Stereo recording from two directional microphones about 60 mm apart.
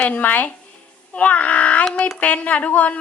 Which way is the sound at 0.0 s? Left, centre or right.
Left.